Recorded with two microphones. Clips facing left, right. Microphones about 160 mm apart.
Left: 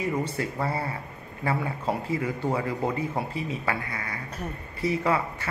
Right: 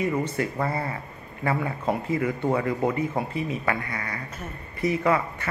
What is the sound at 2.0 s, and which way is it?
Speech, 30° left (ahead or behind).